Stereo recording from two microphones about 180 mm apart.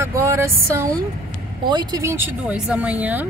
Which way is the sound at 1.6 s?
25° right (ahead or behind).